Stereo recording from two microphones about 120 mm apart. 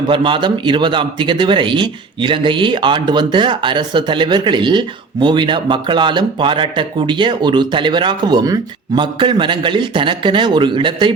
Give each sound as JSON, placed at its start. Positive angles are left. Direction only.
{"t": 0.1, "sound": "speech", "side_deg": -45}